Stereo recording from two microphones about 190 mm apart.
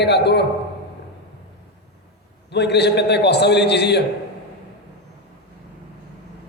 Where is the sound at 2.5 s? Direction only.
60° left (ahead or behind).